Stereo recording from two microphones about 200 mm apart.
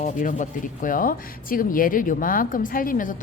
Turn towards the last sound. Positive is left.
turn(degrees=40)  # may be behind; listen again after turning